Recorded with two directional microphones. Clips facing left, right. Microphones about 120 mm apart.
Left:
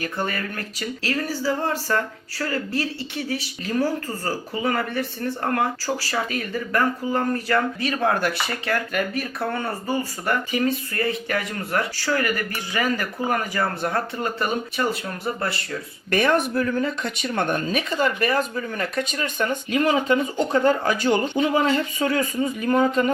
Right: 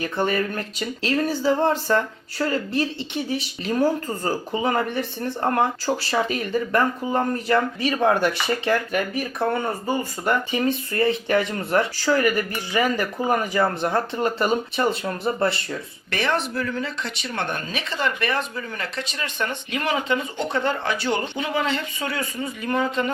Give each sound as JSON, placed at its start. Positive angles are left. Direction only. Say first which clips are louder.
{"t": 0.0, "sound": "speech", "louder": "right 4 dB", "side_deg": -20}
{"t": 16.0, "sound": "speech", "louder": "left 4 dB", "side_deg": 45}